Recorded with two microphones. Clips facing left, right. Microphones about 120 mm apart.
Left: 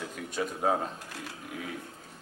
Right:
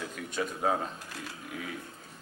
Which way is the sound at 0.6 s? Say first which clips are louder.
Left 2 dB; 30° left (ahead or behind).